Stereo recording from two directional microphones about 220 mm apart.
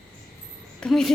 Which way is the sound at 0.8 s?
Centre (ahead or behind).